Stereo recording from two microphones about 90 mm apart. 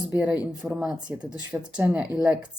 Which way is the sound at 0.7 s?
5° right (ahead or behind).